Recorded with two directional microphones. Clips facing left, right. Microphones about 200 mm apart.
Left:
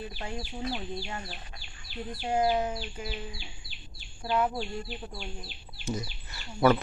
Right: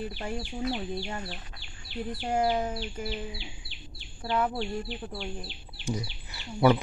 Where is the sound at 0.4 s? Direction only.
25° right (ahead or behind).